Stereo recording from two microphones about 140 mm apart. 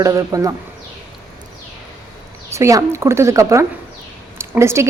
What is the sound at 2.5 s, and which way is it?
A woman's voice, 20° right (ahead or behind).